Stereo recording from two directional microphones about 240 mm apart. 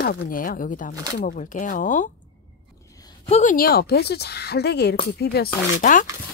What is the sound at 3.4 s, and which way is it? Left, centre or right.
A woman's voice, left.